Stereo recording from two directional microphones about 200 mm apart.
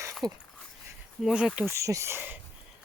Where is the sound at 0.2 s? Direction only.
20° right (ahead or behind).